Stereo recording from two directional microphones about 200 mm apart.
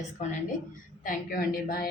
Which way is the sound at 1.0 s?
45° left (ahead or behind).